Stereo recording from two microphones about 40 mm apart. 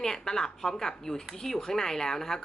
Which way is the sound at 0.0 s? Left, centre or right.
Centre.